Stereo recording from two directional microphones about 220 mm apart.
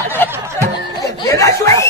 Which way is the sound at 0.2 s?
10° left (ahead or behind).